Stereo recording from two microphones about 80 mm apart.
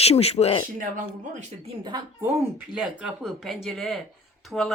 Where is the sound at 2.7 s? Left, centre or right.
Centre.